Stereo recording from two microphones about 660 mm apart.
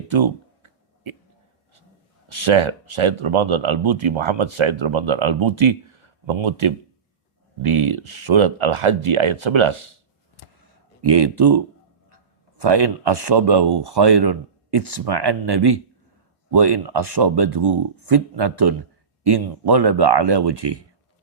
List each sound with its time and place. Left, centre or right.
0.1 s a sound: right
2.3 s speech: right
11.0 s speech: right